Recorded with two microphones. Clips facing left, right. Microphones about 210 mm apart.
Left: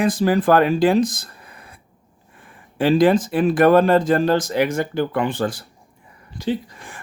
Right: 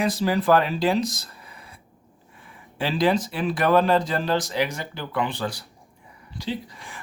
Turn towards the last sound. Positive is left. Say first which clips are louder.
# left 6 dB
turn(degrees=50)  # may be behind; listen again after turning